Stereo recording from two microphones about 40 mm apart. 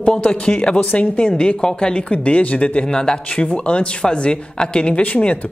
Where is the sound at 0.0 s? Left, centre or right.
Left.